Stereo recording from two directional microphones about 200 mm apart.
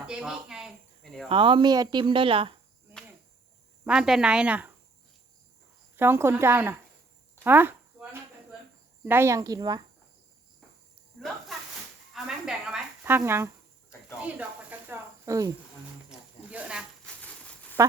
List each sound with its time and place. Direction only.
0.0 s speech: 5° right (ahead or behind)
1.3 s speech: 25° right (ahead or behind)
3.8 s speech: 5° right (ahead or behind)
6.0 s speech: 10° right (ahead or behind)
7.4 s a sound: 10° right (ahead or behind)
9.0 s speech: 10° right (ahead or behind)
12.1 s a sound: centre (ahead or behind)
14.2 s speech: 5° right (ahead or behind)
16.0 s snake: 5° right (ahead or behind)
17.2 s a sound: 5° left (ahead or behind)